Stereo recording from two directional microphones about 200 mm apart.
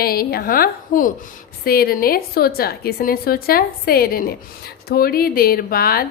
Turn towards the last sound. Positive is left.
turn(degrees=50)  # may be behind; listen again after turning